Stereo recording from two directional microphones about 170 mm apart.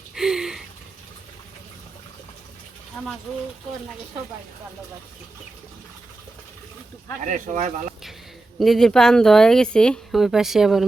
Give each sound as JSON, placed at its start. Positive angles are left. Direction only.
{"t": 0.1, "sound": "a sound", "side_deg": -5}
{"t": 3.0, "sound": "speech", "side_deg": 10}
{"t": 7.3, "sound": "speech", "side_deg": -50}
{"t": 8.5, "sound": "speech", "side_deg": 0}